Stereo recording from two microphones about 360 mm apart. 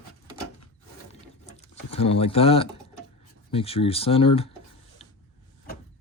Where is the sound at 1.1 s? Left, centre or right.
Centre.